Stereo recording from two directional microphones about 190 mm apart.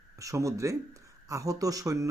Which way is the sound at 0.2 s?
15° right (ahead or behind).